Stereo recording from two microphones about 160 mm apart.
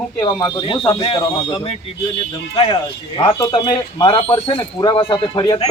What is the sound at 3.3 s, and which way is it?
A man's voice, 25° left (ahead or behind).